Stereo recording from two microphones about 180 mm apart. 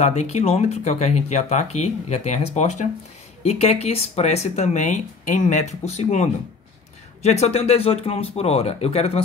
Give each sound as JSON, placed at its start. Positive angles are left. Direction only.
{"t": 0.0, "sound": "speech", "side_deg": 40}
{"t": 7.2, "sound": "speech", "side_deg": 35}